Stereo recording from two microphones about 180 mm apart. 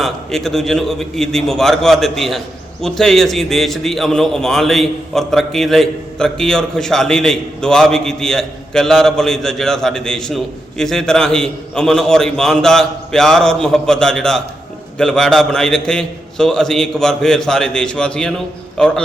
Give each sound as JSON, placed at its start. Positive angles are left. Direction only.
{"t": 0.0, "sound": "a man's voice", "side_deg": 0}